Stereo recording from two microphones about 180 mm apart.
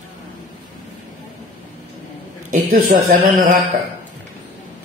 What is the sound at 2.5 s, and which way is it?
Speech, 55° right (ahead or behind).